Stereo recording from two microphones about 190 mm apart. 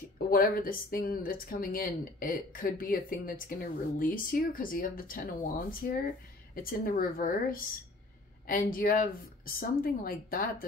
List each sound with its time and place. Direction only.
0.3 s speech: 50° left (ahead or behind)